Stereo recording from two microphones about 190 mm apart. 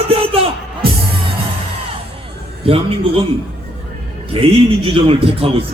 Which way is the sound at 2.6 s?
30° right (ahead or behind).